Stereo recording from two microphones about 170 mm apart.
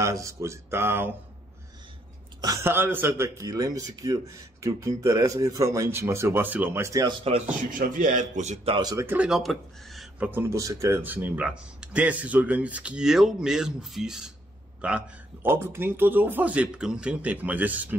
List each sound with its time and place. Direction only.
0.0 s speech: 20° right (ahead or behind)
2.4 s speech: 20° right (ahead or behind)
7.7 s a man's voice: 55° right (ahead or behind)
8.7 s speech: 25° right (ahead or behind)
9.0 s speech: 10° right (ahead or behind)